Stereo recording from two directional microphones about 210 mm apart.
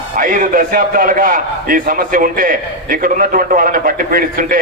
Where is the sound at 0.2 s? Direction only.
40° right (ahead or behind).